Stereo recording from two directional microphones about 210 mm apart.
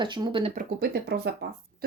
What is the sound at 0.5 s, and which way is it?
Speech, 50° right (ahead or behind).